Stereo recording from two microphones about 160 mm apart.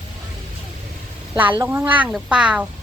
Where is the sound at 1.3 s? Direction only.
10° right (ahead or behind).